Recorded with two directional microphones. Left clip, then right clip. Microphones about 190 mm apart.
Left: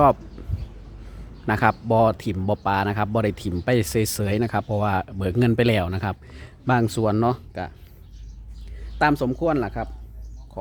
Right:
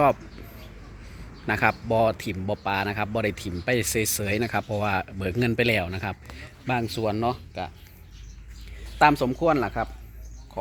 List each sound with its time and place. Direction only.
1.5 s speech: 25° left (ahead or behind)
9.0 s speech: 20° left (ahead or behind)